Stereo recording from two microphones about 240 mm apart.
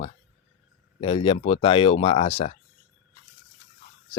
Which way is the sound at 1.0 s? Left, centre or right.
Left.